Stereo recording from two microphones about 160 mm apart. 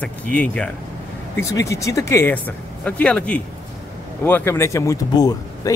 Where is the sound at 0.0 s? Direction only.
10° left (ahead or behind).